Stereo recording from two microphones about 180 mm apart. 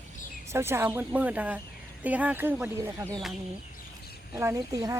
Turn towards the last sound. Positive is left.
turn(degrees=-15)  # may be behind; listen again after turning